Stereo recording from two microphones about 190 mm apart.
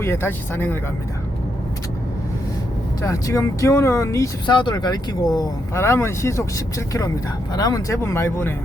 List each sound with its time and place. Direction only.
0.0 s speech: 10° left (ahead or behind)
3.0 s speech: 15° left (ahead or behind)